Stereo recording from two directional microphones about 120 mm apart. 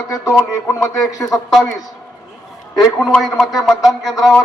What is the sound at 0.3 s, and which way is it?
Speech, 25° left (ahead or behind).